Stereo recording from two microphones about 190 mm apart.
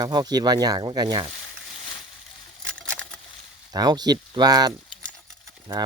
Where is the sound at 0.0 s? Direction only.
20° right (ahead or behind).